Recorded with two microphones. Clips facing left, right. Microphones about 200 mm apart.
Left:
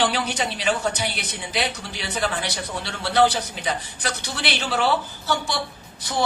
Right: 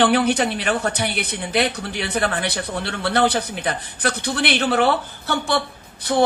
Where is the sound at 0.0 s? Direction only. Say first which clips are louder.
Right 7 dB; 55° right (ahead or behind).